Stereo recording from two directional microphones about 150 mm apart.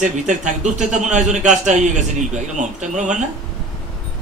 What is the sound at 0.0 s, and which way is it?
A man's voice, 55° right (ahead or behind).